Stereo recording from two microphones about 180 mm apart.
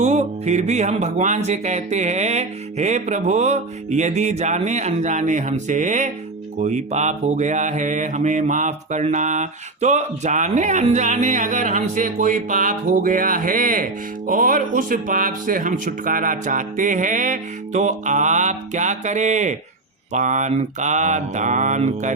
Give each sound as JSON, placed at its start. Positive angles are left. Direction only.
{"t": 0.0, "sound": "speech", "side_deg": -40}